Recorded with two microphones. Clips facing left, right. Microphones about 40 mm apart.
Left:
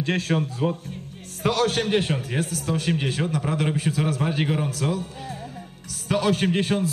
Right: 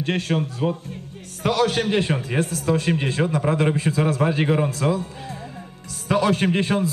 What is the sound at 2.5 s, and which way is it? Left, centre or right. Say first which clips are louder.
Speech: right 4 dB; right.